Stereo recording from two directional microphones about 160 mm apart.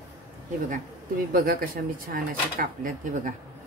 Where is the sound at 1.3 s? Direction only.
65° right (ahead or behind).